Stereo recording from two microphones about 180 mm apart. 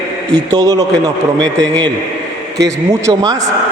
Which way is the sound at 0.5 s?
20° right (ahead or behind).